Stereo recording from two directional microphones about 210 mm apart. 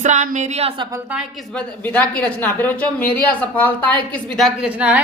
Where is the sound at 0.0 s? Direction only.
35° right (ahead or behind).